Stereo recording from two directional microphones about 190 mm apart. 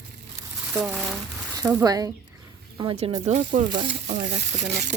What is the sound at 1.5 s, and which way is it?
Speech, 15° right (ahead or behind).